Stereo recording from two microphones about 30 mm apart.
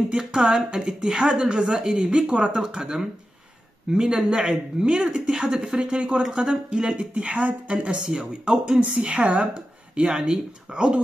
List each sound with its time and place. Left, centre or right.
0.1 s speech: right
2.6 s speech: right
4.8 s speech: right
5.8 s speech: right
7.3 s speech: right
9.5 s speech: right